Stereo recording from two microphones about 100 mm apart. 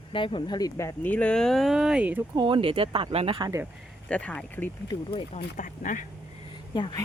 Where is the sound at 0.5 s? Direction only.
35° left (ahead or behind).